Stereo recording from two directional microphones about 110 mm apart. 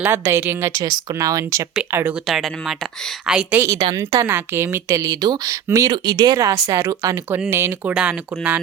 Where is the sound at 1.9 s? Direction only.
20° right (ahead or behind).